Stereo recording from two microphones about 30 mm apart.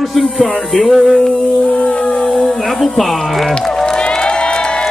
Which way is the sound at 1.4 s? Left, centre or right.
Left.